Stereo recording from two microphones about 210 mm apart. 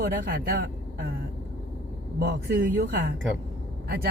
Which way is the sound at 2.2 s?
45° right (ahead or behind).